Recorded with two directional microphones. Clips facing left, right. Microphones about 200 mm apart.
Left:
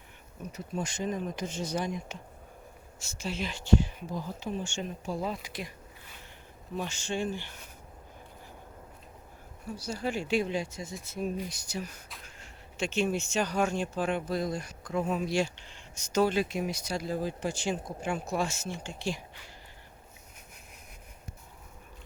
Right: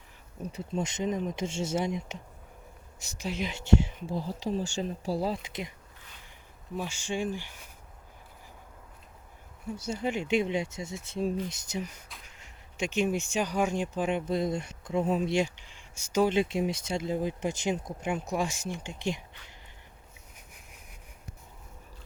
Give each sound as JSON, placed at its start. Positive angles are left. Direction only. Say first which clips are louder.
{"t": 0.4, "sound": "speech", "louder": "right 3 dB", "side_deg": -30}
{"t": 6.7, "sound": "speech", "louder": "even", "side_deg": -10}
{"t": 9.7, "sound": "speech", "louder": "right 1 dB", "side_deg": -20}
{"t": 15.4, "sound": "speech", "louder": "right 1 dB", "side_deg": -15}
{"t": 16.3, "sound": "speech", "louder": "right 3 dB", "side_deg": -25}